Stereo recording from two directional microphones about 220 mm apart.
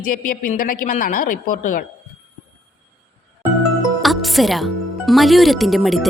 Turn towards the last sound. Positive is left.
turn(degrees=0)  # may be behind; listen again after turning